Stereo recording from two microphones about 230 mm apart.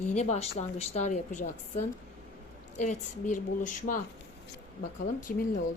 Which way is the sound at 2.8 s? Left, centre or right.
Left.